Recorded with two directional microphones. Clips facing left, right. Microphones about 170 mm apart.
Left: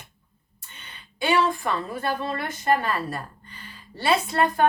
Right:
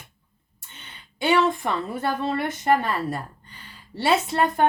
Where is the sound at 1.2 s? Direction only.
20° right (ahead or behind).